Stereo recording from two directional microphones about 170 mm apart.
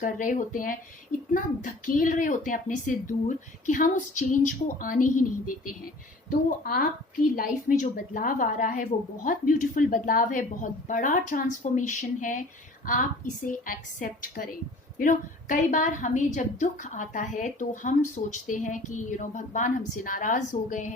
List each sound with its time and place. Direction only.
0.0 s a woman's voice: 50° left (ahead or behind)
6.3 s a woman's voice: 60° left (ahead or behind)